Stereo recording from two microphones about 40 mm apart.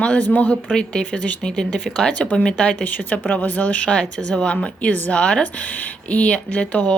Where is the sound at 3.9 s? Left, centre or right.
Left.